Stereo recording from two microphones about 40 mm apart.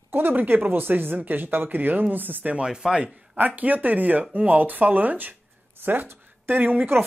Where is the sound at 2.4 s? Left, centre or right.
Right.